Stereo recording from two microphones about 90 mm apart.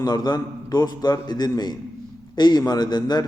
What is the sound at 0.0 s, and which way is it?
A man's voice, 50° left (ahead or behind).